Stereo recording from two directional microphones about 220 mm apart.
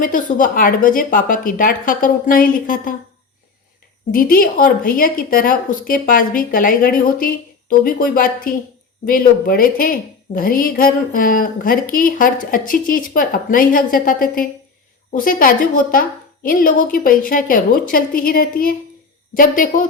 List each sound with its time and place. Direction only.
0.0 s a woman's voice: 35° left (ahead or behind)
4.1 s a woman's voice: 40° left (ahead or behind)